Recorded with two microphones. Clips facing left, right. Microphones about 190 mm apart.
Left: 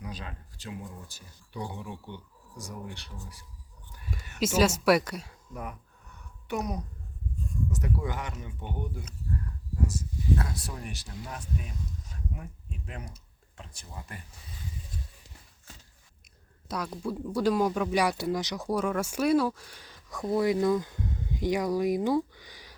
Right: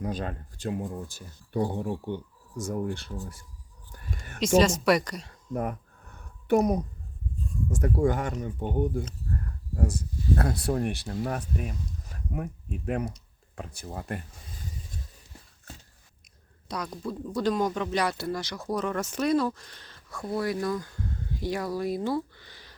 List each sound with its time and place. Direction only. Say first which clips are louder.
0.0 s speech: right 9 dB; 50° right (ahead or behind)
4.4 s speech: right 3 dB; 5° left (ahead or behind)
5.5 s a sound: right 9 dB; 50° right (ahead or behind)
7.7 s speech: right 11 dB; 50° right (ahead or behind)
9.8 s speech: right 2 dB; 55° right (ahead or behind)
16.6 s speech: left 1 dB; 5° left (ahead or behind)